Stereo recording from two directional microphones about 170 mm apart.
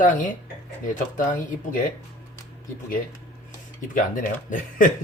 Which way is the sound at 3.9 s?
50° left (ahead or behind).